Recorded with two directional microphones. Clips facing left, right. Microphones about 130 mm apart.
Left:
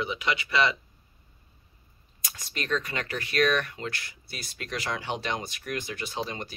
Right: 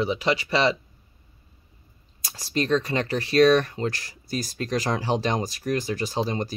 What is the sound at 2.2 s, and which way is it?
Speech, 35° right (ahead or behind).